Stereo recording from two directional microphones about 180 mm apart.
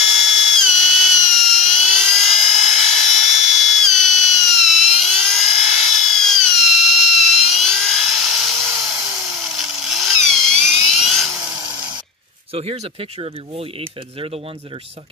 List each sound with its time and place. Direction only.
0.0 s drill: centre (ahead or behind)
8.7 s tools: 5° right (ahead or behind)
13.2 s speech: 30° right (ahead or behind)